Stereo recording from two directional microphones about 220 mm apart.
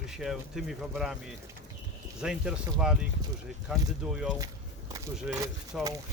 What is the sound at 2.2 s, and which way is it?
Speech, 5° right (ahead or behind).